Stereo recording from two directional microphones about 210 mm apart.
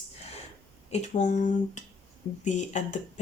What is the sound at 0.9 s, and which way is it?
Speech, 35° left (ahead or behind).